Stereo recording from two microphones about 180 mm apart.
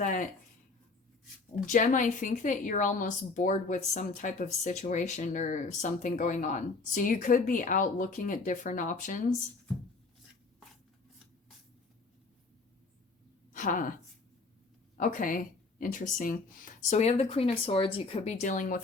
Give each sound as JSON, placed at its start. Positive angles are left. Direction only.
{"t": 0.0, "sound": "a woman's voice", "side_deg": 50}
{"t": 1.7, "sound": "a woman's voice", "side_deg": 45}
{"t": 13.5, "sound": "a woman's voice", "side_deg": 45}
{"t": 14.9, "sound": "speech", "side_deg": 45}
{"t": 16.9, "sound": "speech", "side_deg": 40}